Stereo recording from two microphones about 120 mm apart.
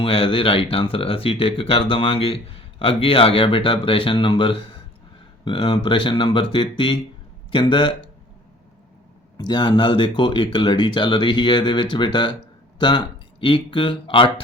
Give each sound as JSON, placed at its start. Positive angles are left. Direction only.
{"t": 0.0, "sound": "speech", "side_deg": 50}
{"t": 9.4, "sound": "speech", "side_deg": 35}